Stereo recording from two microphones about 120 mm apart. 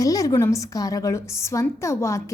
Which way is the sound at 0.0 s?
30° left (ahead or behind).